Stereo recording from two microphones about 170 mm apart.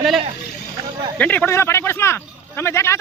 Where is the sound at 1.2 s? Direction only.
10° left (ahead or behind).